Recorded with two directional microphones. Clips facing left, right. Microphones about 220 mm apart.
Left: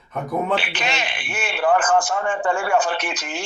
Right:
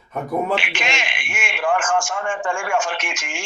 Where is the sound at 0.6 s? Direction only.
35° left (ahead or behind).